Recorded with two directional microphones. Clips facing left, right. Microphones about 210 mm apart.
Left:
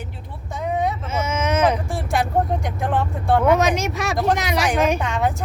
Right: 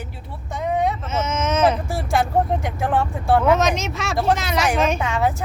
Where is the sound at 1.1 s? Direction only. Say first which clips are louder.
Left 1 dB; 10° left (ahead or behind).